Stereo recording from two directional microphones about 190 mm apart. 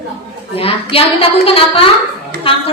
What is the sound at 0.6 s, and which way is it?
A woman's voice, 30° left (ahead or behind).